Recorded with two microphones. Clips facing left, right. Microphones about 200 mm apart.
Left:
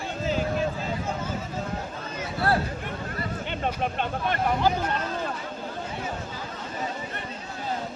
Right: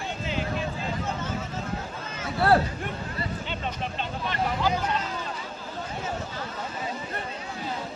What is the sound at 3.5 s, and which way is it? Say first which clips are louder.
Speech: left 4 dB; 55° left (ahead or behind).